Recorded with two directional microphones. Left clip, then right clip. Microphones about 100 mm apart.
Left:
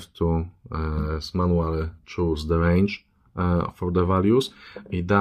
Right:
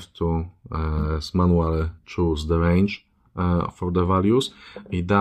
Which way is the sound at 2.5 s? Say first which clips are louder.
Left 1 dB; 5° right (ahead or behind).